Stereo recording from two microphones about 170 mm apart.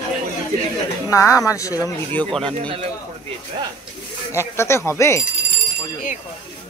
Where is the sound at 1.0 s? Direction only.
20° left (ahead or behind).